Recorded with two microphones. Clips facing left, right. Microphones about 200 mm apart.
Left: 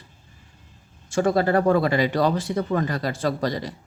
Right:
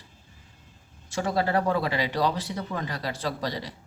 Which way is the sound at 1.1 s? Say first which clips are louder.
Left 6 dB; 50° left (ahead or behind).